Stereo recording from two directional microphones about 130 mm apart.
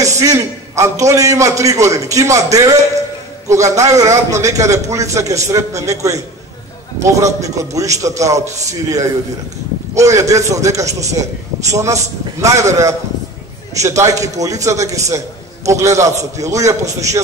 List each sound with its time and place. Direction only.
0.2 s a man's voice: 25° right (ahead or behind)
9.9 s a man's voice: 25° right (ahead or behind)